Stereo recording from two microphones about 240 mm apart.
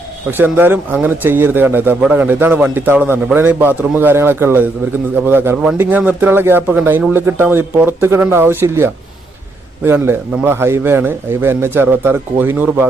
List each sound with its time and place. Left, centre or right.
0.3 s speech: centre